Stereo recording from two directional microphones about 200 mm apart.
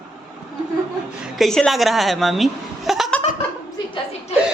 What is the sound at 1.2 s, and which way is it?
Speech, centre (ahead or behind).